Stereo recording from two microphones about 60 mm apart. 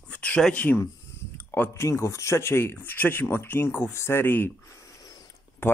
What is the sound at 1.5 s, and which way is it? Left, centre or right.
Speech, left.